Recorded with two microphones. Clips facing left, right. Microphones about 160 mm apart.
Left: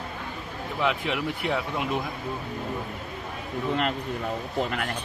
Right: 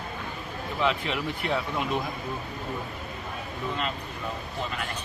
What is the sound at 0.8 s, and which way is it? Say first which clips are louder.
Speech: left 1 dB; 10° left (ahead or behind).